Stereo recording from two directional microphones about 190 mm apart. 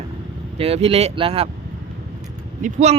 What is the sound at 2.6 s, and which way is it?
Speech, 35° right (ahead or behind).